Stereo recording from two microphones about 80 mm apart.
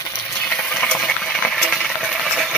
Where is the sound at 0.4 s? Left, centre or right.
Centre.